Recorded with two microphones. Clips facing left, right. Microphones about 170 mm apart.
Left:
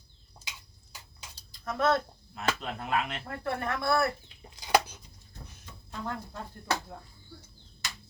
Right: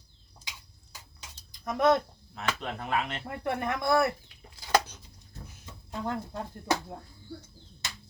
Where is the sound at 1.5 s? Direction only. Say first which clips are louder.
Right 3 dB; 15° right (ahead or behind).